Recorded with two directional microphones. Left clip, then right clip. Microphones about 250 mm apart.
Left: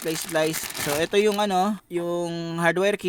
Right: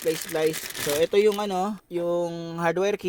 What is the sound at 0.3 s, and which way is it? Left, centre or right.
Speech, centre.